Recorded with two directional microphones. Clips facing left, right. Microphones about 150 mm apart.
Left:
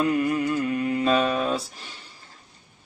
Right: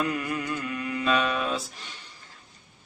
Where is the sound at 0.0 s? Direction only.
30° left (ahead or behind).